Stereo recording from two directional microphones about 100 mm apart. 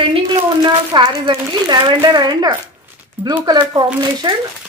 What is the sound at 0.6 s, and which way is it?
A woman's voice, 45° right (ahead or behind).